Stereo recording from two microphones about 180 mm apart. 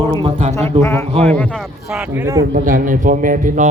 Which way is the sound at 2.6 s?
45° right (ahead or behind).